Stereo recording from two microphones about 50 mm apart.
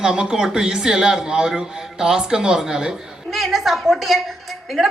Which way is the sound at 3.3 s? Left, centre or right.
Centre.